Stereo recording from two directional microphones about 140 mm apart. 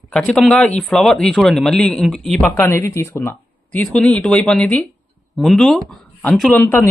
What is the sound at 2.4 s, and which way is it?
Speech, 15° left (ahead or behind).